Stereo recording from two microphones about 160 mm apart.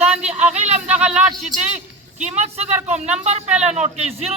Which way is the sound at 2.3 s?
45° right (ahead or behind).